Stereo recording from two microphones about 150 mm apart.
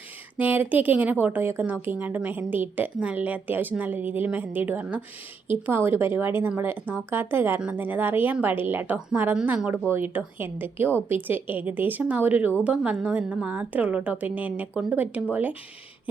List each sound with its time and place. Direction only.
0.3 s a woman's voice: 10° right (ahead or behind)